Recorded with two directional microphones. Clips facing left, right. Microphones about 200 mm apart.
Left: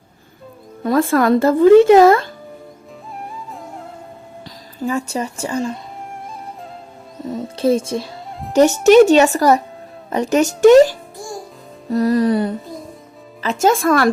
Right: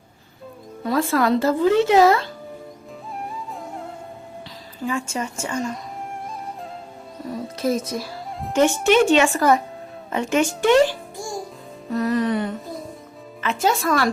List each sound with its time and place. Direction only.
0.9 s speech: 50° left (ahead or behind)
3.2 s music: centre (ahead or behind)
4.8 s speech: 40° left (ahead or behind)
7.5 s speech: 30° left (ahead or behind)
8.0 s music: centre (ahead or behind)
8.5 s speech: 40° left (ahead or behind)